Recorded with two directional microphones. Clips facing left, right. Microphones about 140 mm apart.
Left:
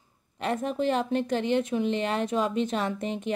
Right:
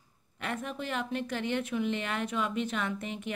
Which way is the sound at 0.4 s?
35° left (ahead or behind).